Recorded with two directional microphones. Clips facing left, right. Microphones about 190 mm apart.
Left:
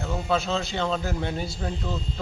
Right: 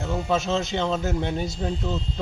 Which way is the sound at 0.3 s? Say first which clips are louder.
Right 1 dB; 20° right (ahead or behind).